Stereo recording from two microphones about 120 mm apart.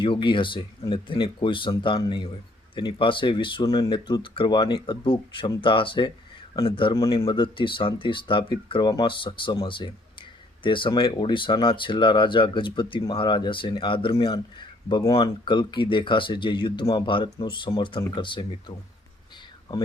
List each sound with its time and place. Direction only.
0.0 s speech: 40° left (ahead or behind)
6.9 s speech: 30° left (ahead or behind)